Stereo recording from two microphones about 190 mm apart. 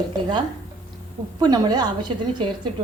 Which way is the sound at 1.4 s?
20° right (ahead or behind).